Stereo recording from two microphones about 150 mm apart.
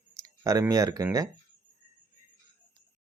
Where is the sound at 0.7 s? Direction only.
25° right (ahead or behind).